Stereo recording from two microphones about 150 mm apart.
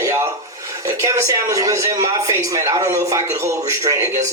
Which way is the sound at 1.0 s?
20° right (ahead or behind).